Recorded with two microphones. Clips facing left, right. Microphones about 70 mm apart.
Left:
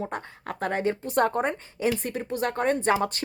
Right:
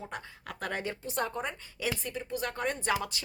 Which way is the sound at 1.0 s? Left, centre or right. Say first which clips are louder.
Left 10 dB; left.